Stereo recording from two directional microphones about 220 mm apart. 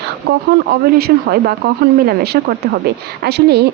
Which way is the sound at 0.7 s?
45° right (ahead or behind).